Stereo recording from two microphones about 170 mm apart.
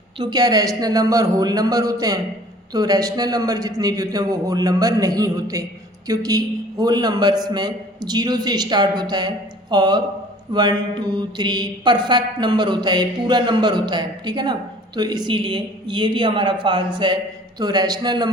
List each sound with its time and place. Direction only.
0.2 s a man's voice: 25° right (ahead or behind)